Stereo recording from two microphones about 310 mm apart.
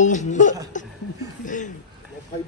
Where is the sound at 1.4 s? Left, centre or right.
Left.